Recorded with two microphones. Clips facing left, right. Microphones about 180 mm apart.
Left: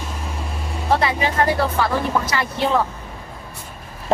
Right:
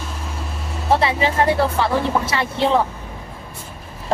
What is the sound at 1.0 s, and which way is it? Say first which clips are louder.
Speech: right 1 dB; 25° right (ahead or behind).